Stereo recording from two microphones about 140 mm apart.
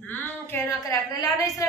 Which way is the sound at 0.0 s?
15° left (ahead or behind).